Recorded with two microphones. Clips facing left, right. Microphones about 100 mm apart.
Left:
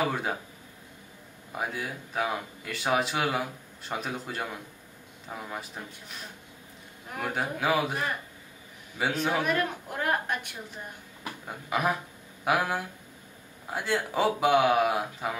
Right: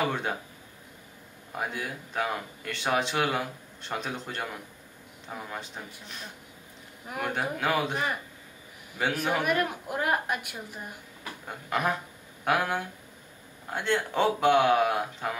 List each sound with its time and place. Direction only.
0.0 s speech: 5° left (ahead or behind)
1.5 s speech: 5° left (ahead or behind)
7.1 s a woman's voice: centre (ahead or behind)
11.2 s speech: 5° left (ahead or behind)